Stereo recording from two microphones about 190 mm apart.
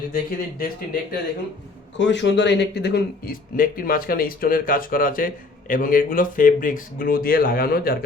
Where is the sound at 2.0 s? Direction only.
70° left (ahead or behind); by 7.9 s 50° left (ahead or behind).